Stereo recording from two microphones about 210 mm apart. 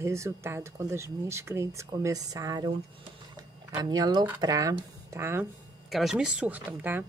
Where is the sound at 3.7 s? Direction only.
20° right (ahead or behind).